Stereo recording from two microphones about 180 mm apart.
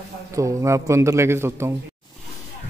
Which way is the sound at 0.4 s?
15° right (ahead or behind).